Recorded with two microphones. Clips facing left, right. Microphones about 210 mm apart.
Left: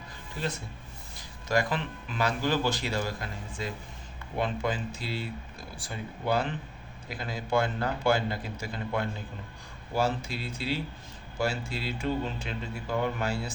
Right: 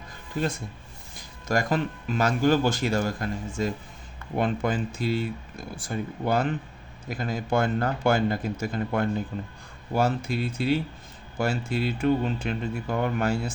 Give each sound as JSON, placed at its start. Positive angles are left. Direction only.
{"t": 1.5, "sound": "speech", "side_deg": -45}